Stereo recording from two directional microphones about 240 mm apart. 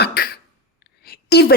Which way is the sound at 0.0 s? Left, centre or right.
Left.